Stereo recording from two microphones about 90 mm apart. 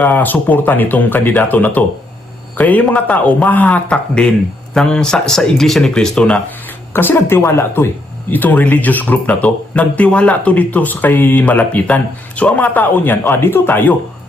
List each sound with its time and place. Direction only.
0.0 s speech: 20° left (ahead or behind)
6.9 s speech: 25° left (ahead or behind)